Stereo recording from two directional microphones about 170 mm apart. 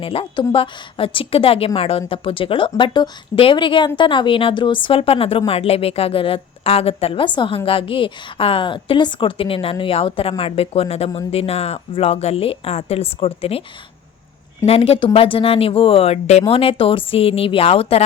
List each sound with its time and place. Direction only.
0.0 s a woman's voice: 35° left (ahead or behind)
14.6 s a woman's voice: 35° left (ahead or behind)